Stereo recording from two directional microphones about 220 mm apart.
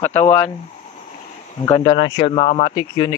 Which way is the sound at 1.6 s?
20° left (ahead or behind).